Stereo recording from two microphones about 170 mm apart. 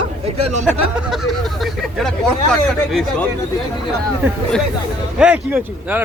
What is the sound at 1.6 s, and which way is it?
Speech, centre (ahead or behind).